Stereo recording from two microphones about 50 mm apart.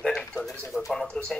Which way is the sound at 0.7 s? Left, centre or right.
Centre.